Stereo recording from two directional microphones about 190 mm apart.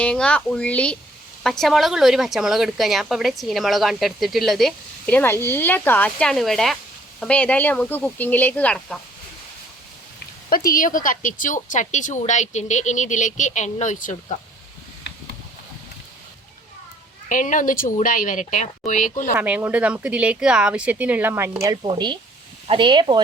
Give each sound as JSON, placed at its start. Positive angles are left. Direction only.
{"t": 0.0, "sound": "speech", "side_deg": 5}
{"t": 10.5, "sound": "a woman's voice", "side_deg": 50}
{"t": 17.2, "sound": "speech", "side_deg": 45}
{"t": 19.4, "sound": "speech", "side_deg": -10}